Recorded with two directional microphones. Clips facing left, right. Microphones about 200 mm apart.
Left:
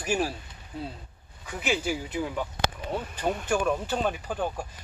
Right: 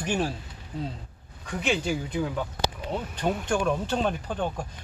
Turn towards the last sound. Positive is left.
turn(degrees=5)  # may be behind; listen again after turning